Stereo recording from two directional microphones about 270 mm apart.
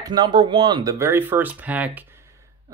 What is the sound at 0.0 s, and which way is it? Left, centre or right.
Speech, centre.